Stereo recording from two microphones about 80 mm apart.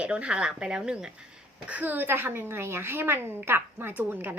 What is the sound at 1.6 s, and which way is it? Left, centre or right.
Speech, centre.